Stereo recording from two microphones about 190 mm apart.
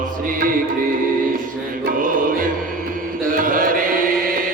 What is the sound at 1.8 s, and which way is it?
Music, 45° right (ahead or behind).